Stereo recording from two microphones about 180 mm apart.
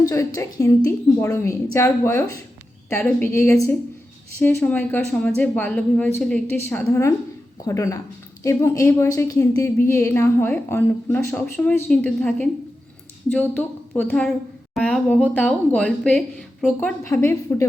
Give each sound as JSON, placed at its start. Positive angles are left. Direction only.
{"t": 0.0, "sound": "a woman's voice", "side_deg": 20}
{"t": 17.0, "sound": "a woman's voice", "side_deg": 15}